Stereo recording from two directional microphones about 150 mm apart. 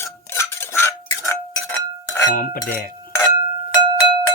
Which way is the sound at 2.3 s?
75° left (ahead or behind).